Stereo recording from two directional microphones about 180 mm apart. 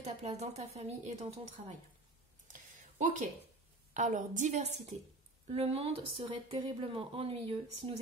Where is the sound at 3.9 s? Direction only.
45° right (ahead or behind).